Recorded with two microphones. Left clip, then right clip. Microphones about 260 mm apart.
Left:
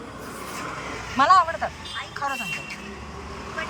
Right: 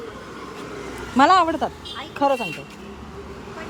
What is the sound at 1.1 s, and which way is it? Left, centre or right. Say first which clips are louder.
Speech: right 2 dB; right.